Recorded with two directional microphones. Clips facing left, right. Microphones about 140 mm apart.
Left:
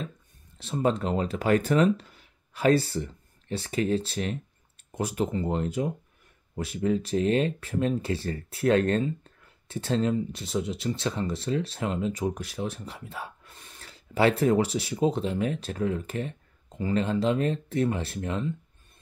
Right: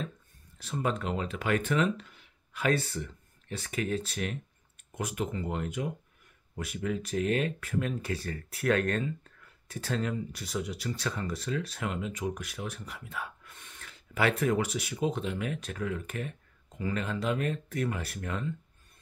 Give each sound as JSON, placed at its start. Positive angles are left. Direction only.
{"t": 0.6, "sound": "speech", "side_deg": 30}